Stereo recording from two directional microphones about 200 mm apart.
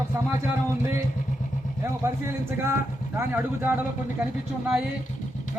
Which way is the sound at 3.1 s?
10° right (ahead or behind).